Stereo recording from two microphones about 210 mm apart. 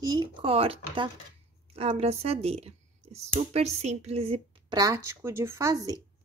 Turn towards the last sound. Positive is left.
turn(degrees=-15)  # may be behind; listen again after turning